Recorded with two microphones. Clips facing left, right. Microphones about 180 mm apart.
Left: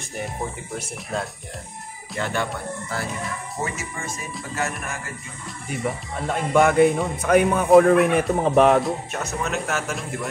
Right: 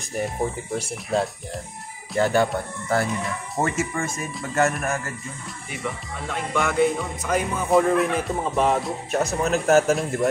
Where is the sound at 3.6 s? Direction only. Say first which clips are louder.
Right 7 dB; 50° right (ahead or behind).